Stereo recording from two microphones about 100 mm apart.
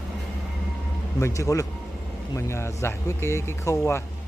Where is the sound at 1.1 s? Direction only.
30° left (ahead or behind).